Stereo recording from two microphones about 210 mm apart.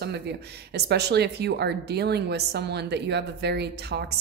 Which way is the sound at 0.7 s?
50° right (ahead or behind).